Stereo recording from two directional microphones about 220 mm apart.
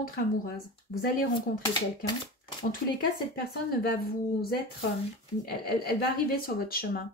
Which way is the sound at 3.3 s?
45° left (ahead or behind).